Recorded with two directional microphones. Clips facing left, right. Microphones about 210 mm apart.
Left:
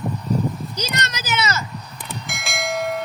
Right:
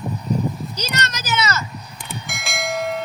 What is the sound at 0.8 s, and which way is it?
Speech, 15° left (ahead or behind).